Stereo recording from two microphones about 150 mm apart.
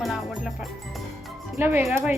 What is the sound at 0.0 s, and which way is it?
Music, centre (ahead or behind).